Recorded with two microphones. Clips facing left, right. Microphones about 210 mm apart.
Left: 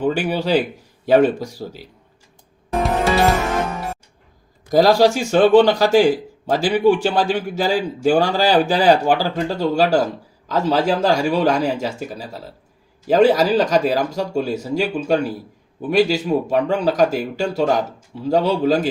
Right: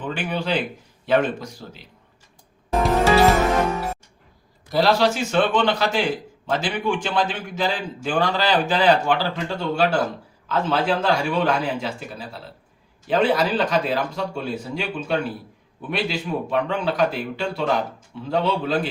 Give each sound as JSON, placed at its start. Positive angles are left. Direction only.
{"t": 0.0, "sound": "speech", "side_deg": 40}
{"t": 4.7, "sound": "speech", "side_deg": 40}